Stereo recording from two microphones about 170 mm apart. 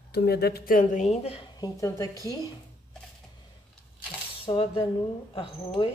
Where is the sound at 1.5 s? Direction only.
20° left (ahead or behind).